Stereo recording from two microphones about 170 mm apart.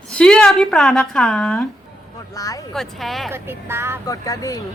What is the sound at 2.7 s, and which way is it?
Speech, centre (ahead or behind).